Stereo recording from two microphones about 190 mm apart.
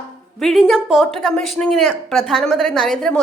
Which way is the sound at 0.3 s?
Centre (ahead or behind).